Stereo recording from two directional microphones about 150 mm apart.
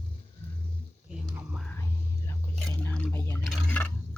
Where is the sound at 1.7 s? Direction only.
20° left (ahead or behind).